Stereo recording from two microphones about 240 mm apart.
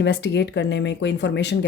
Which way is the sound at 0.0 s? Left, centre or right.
Left.